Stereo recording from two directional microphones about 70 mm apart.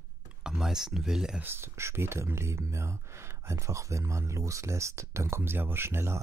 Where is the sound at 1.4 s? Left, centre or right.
Right.